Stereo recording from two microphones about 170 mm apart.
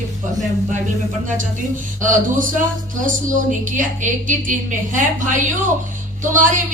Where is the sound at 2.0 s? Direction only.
50° right (ahead or behind).